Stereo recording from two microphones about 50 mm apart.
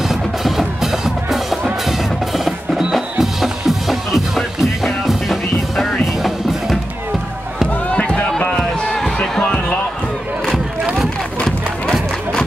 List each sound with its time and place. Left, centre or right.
0.1 s music: centre
1.9 s percussion: centre
2.9 s music: centre
8.1 s a sound: centre
9.2 s music: centre
10.4 s a sound: centre
11.0 s music: centre